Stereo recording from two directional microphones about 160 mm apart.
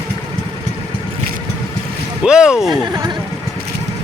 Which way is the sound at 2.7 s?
25° right (ahead or behind).